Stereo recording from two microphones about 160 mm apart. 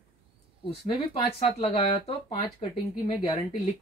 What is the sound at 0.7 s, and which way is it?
Speech, 35° left (ahead or behind).